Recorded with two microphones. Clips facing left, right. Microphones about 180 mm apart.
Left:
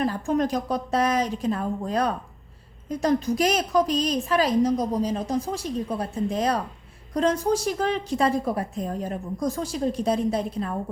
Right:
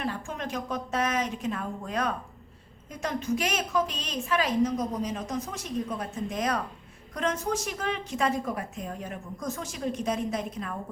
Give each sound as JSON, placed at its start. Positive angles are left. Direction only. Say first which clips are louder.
{"t": 0.0, "sound": "a woman's voice", "louder": "left 10 dB", "side_deg": 40}